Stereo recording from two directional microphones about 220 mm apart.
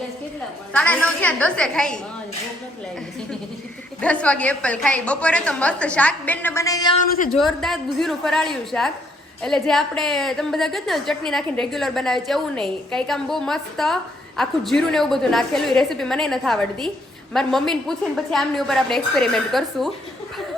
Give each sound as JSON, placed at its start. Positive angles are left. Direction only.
{"t": 0.7, "sound": "a woman's voice", "side_deg": 5}
{"t": 4.0, "sound": "a woman's voice", "side_deg": 5}
{"t": 7.0, "sound": "speech", "side_deg": 35}
{"t": 7.3, "sound": "a woman's voice", "side_deg": 0}